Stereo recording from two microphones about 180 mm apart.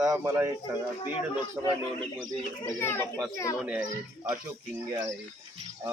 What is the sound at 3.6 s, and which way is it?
Speech, 5° right (ahead or behind).